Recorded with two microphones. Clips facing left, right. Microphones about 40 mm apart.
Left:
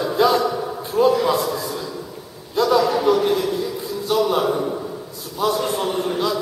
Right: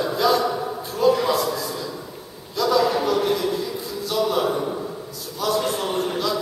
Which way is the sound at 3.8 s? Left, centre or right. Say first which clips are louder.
Left 4 dB; left.